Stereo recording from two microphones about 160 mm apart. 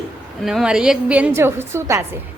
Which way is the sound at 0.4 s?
5° right (ahead or behind).